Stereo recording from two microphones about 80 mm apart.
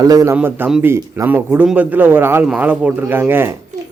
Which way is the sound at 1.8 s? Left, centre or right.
Right.